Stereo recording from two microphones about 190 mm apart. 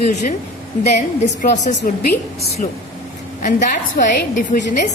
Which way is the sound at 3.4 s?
45° left (ahead or behind).